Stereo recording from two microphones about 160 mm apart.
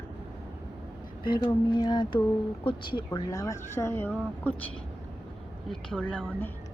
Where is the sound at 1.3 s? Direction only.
25° left (ahead or behind); by 4.6 s 10° left (ahead or behind).